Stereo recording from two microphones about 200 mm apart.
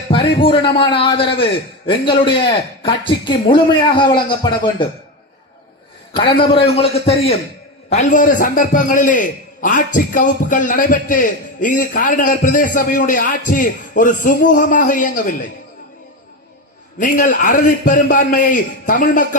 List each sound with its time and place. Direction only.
0.1 s a man's voice: 25° left (ahead or behind)
6.7 s a man's voice: 30° left (ahead or behind)
17.0 s a man's voice: 40° left (ahead or behind)